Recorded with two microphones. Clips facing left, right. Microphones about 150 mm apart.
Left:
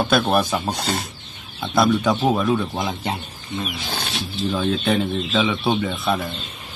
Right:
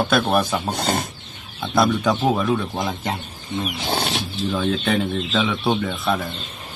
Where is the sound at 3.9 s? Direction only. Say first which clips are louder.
Right 6 dB; 30° right (ahead or behind).